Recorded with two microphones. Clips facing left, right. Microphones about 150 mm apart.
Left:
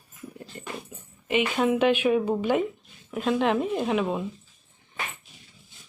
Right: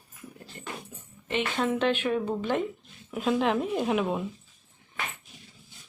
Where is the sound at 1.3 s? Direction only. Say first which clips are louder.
Left 4 dB; 10° left (ahead or behind).